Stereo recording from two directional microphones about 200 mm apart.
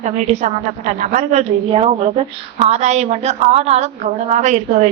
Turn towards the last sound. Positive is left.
turn(degrees=-35)  # may be behind; listen again after turning